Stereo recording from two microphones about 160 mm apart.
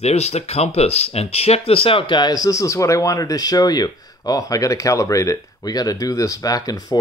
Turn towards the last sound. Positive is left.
turn(degrees=25)  # may be behind; listen again after turning